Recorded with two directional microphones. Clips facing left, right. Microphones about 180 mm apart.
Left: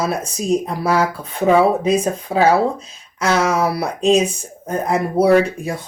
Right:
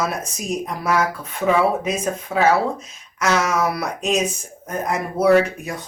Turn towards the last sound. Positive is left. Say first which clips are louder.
# left 2 dB
turn(degrees=30)  # may be behind; listen again after turning